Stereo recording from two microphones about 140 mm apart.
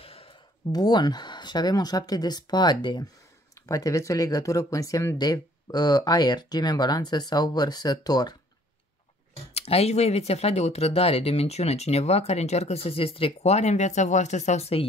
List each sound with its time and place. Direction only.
0.0 s a sound: 45° left (ahead or behind)
0.7 s speech: 30° left (ahead or behind)
9.5 s speech: 45° left (ahead or behind)